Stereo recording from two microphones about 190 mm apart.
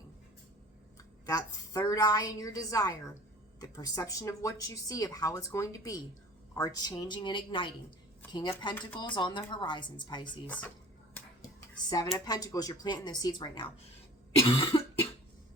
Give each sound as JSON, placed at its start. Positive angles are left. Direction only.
{"t": 1.2, "sound": "a woman's voice", "side_deg": 20}
{"t": 10.4, "sound": "speech", "side_deg": 10}
{"t": 11.1, "sound": "a sound", "side_deg": 20}
{"t": 12.1, "sound": "a woman's voice", "side_deg": 20}
{"t": 14.4, "sound": "cough", "side_deg": 30}